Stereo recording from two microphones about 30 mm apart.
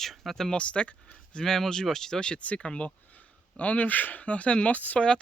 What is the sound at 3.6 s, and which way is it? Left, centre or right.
Speech, left.